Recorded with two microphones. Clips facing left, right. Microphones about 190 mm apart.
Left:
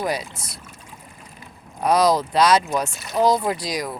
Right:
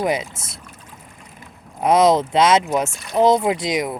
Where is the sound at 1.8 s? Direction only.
25° right (ahead or behind).